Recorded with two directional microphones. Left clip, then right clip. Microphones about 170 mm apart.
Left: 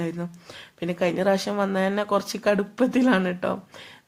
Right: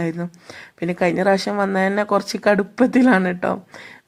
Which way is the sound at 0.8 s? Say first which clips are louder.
Right 5 dB; 25° right (ahead or behind).